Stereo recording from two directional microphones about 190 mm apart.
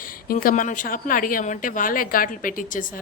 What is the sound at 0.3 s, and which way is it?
Speech, 45° left (ahead or behind).